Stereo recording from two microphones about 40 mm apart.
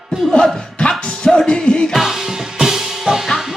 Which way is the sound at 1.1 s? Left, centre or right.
Centre.